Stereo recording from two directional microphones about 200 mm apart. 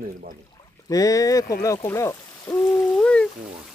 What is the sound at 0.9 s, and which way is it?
Speech, 15° left (ahead or behind).